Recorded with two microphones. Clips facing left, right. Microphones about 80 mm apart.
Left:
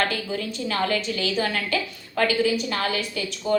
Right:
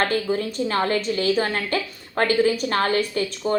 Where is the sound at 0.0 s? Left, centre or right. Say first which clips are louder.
Right 4 dB; right.